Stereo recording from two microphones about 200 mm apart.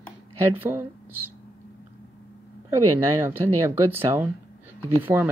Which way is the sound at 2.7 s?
15° right (ahead or behind).